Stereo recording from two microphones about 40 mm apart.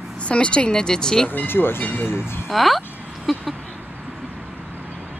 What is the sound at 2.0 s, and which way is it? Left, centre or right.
Speech, left.